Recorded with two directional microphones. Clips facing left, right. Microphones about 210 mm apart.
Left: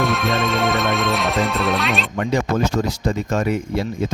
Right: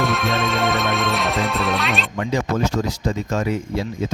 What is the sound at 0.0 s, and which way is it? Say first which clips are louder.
Music: left 1 dB; centre (ahead or behind).